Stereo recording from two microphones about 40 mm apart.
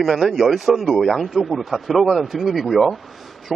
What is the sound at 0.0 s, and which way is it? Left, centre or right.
Speech, centre.